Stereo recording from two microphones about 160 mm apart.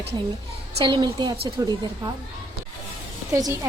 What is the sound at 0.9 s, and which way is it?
Speech, 25° right (ahead or behind).